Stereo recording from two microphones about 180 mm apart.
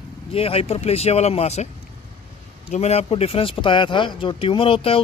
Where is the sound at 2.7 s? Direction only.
35° left (ahead or behind).